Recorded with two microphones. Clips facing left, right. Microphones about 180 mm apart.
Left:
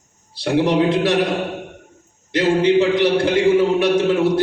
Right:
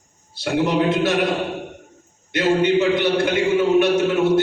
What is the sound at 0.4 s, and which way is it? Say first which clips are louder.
Speech: left 2 dB; 35° left (ahead or behind).